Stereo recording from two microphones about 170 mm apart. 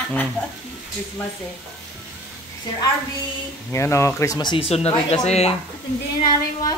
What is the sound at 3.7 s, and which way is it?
Speech, 15° left (ahead or behind).